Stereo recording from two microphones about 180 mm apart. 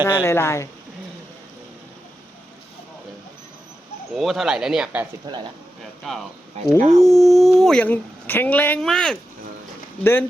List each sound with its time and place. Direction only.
0.1 s a woman's voice: 15° left (ahead or behind)
4.1 s speech: centre (ahead or behind)
5.2 s speech: 25° right (ahead or behind)
6.0 s a woman's voice: centre (ahead or behind)